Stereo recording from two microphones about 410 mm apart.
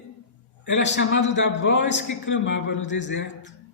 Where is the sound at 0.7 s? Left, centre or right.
Left.